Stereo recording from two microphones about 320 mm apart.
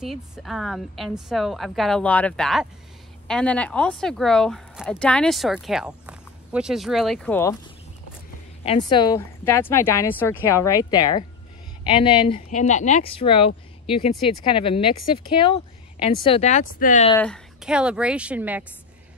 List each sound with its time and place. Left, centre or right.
0.0 s speech: centre
8.6 s speech: centre
17.1 s speech: centre